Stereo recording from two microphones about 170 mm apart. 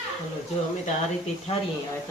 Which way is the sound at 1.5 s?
35° left (ahead or behind).